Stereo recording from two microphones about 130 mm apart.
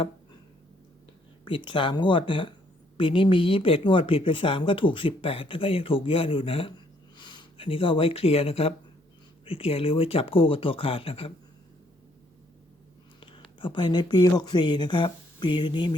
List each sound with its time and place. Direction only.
1.5 s a woman's voice: 40° left (ahead or behind)
13.1 s speech: 40° left (ahead or behind)